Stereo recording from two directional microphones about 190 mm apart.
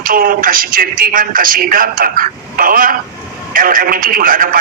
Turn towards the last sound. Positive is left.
turn(degrees=-50)  # may be behind; listen again after turning